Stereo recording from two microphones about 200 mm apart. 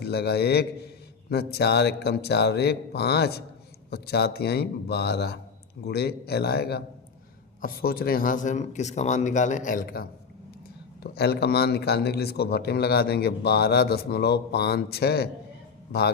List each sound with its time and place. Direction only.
0.0 s a man's voice: 55° left (ahead or behind)